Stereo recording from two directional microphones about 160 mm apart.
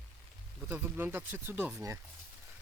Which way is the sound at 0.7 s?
15° right (ahead or behind).